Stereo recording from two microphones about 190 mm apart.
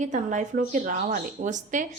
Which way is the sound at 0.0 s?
40° right (ahead or behind).